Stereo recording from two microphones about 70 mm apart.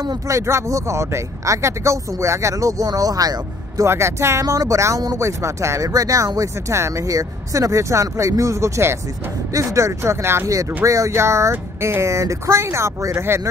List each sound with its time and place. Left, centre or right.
0.3 s speech: right
3.8 s speech: right
5.9 s speech: right